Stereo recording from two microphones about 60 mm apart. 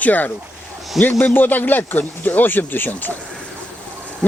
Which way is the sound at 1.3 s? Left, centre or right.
Left.